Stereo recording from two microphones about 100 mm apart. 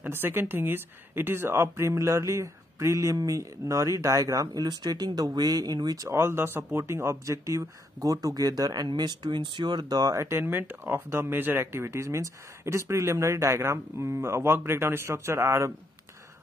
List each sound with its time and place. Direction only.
0.0 s a woman's voice: 20° right (ahead or behind); by 6.0 s 40° right (ahead or behind)
6.0 s a woman's voice: 25° right (ahead or behind); by 10.2 s 40° right (ahead or behind)
10.2 s speech: 25° right (ahead or behind)